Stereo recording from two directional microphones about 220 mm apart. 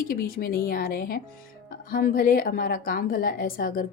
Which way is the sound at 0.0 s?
40° left (ahead or behind).